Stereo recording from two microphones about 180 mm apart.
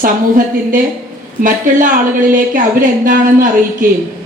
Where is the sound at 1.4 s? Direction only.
45° right (ahead or behind).